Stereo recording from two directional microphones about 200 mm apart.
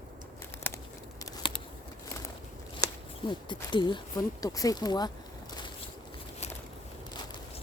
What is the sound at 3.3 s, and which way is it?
Speech, 25° left (ahead or behind).